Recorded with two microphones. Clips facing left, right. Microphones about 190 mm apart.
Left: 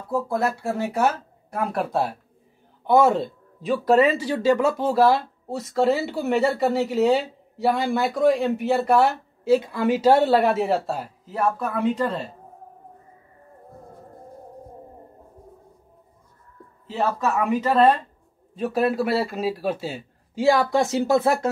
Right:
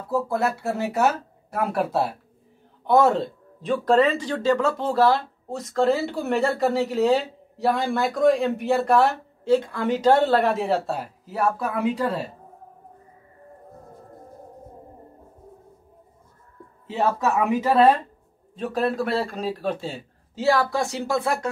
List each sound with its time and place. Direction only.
0.3 s speech: 5° right (ahead or behind)
16.9 s speech: 15° right (ahead or behind)
18.6 s a man's voice: 5° left (ahead or behind); by 21.5 s 25° left (ahead or behind)